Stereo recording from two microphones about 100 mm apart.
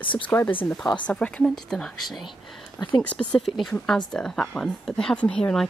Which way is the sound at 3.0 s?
15° left (ahead or behind).